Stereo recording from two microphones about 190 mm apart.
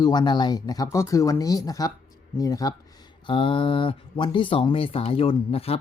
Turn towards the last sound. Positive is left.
turn(degrees=30)  # may be behind; listen again after turning